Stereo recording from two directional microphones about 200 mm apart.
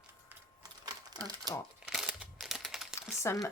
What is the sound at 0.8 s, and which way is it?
Crumpling, 20° right (ahead or behind).